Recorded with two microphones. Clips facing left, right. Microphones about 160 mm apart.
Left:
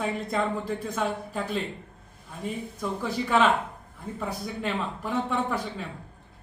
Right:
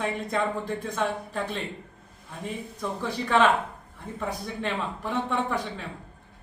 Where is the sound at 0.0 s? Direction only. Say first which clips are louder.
Even; 5° left (ahead or behind).